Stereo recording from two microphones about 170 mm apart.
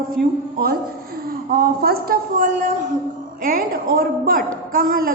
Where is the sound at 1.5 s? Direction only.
60° right (ahead or behind).